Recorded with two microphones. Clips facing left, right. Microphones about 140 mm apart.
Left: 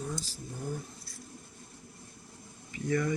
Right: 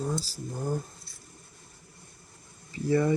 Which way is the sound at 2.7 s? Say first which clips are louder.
Right 5 dB; 35° right (ahead or behind).